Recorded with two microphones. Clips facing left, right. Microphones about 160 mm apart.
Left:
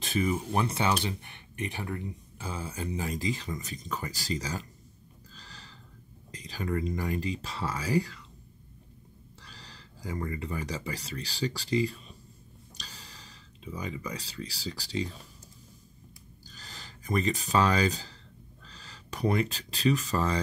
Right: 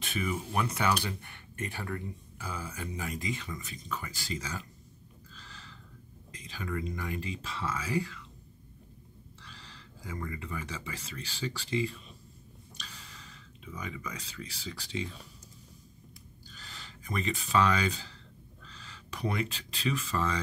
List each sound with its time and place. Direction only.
0.0 s speech: 35° left (ahead or behind)
5.3 s a sound: 35° left (ahead or behind)
6.3 s speech: 40° left (ahead or behind)
9.4 s speech: 40° left (ahead or behind)
16.4 s speech: 40° left (ahead or behind)